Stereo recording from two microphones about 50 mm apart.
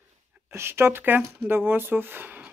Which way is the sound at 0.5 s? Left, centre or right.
Right.